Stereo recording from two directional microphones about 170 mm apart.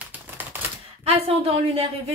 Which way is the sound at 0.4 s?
10° right (ahead or behind).